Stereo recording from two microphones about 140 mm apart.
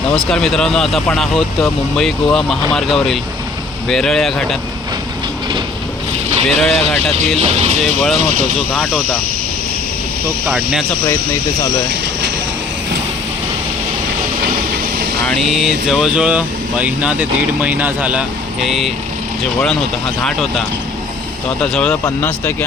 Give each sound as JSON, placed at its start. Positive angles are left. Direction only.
{"t": 0.2, "sound": "speech", "side_deg": 5}
{"t": 6.5, "sound": "speech", "side_deg": 5}
{"t": 7.4, "sound": "speech", "side_deg": -50}
{"t": 7.8, "sound": "speech", "side_deg": 0}
{"t": 15.3, "sound": "speech", "side_deg": 0}
{"t": 21.6, "sound": "speech", "side_deg": 5}